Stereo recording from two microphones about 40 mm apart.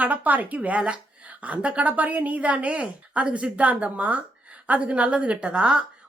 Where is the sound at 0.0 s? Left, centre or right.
Right.